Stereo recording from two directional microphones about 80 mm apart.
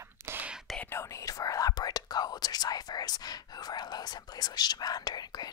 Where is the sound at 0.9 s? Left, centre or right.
Left.